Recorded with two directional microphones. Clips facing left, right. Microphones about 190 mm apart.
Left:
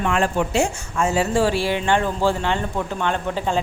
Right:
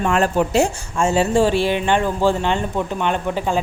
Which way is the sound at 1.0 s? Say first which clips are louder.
Right 3 dB; 25° right (ahead or behind).